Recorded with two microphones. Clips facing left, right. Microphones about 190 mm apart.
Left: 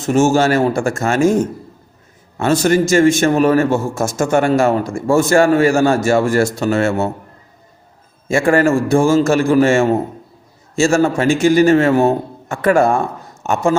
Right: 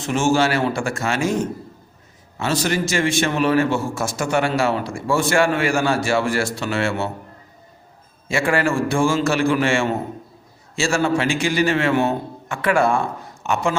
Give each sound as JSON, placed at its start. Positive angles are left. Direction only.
{"t": 0.0, "sound": "a man's voice", "side_deg": 45}
{"t": 8.3, "sound": "a man's voice", "side_deg": 45}